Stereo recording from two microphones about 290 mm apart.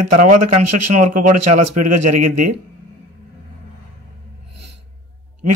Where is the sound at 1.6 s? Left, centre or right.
Right.